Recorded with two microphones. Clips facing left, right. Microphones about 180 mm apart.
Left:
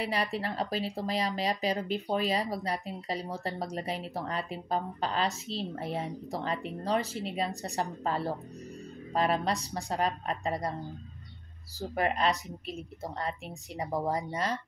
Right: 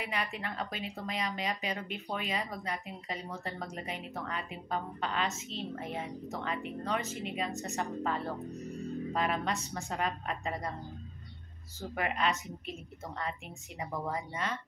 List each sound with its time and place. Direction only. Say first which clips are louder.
0.0 s speech: left 5 dB; 35° left (ahead or behind)
11.9 s speech: left 4 dB; 35° left (ahead or behind)